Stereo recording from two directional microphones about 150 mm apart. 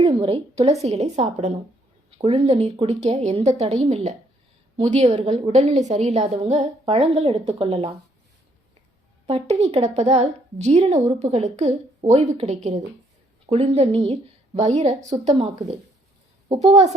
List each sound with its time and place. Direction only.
0.0 s a woman's voice: 40° right (ahead or behind)
9.2 s a woman's voice: 45° right (ahead or behind)
13.7 s a woman's voice: 40° right (ahead or behind)
16.5 s a woman's voice: 45° right (ahead or behind)